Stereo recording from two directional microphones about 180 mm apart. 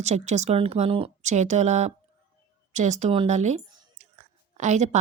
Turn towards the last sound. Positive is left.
turn(degrees=-40)  # may be behind; listen again after turning